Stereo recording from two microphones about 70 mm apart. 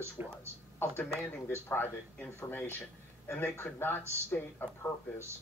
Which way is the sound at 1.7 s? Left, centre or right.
Left.